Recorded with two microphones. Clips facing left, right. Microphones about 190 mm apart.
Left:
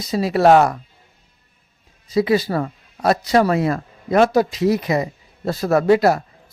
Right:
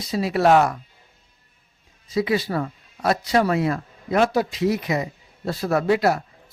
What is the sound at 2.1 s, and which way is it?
Speech, 40° left (ahead or behind).